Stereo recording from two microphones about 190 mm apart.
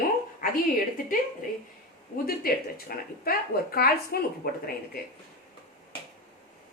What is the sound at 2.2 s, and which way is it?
Speech, 50° left (ahead or behind).